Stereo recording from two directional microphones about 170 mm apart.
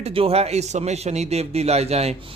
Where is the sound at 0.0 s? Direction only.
35° right (ahead or behind).